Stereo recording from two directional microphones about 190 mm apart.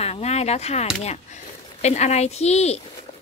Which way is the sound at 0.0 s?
35° left (ahead or behind).